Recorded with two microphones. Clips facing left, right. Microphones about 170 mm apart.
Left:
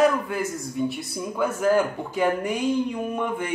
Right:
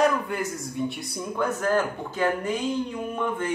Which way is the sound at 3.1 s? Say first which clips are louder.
Left 1 dB; 10° left (ahead or behind).